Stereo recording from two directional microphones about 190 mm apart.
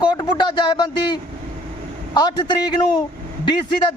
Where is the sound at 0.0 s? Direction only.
25° left (ahead or behind).